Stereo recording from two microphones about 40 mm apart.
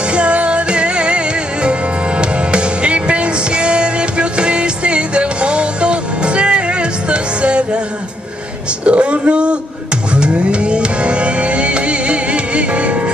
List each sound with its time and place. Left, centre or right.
0.0 s music: right
8.8 s a sound: right
10.1 s music: right